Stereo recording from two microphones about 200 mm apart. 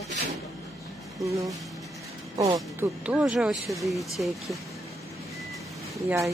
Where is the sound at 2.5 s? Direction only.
10° right (ahead or behind).